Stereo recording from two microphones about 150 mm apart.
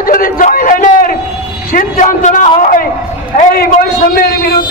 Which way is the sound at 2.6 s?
65° left (ahead or behind).